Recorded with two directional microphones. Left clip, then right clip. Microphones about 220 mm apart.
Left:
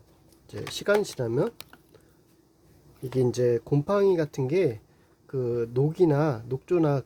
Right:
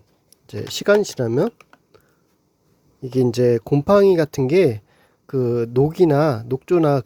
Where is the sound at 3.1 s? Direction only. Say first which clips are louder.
Right 7 dB; 30° right (ahead or behind).